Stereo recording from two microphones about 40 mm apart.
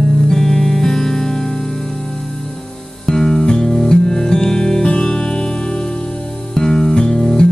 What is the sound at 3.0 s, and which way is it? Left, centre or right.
Music, centre.